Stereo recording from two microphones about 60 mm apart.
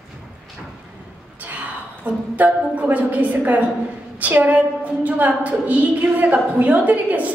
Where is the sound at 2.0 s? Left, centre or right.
Right.